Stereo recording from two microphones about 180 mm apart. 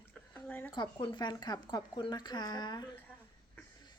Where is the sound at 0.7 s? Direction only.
25° left (ahead or behind).